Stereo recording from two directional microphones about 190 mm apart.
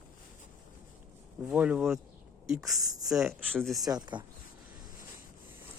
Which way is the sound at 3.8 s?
20° right (ahead or behind).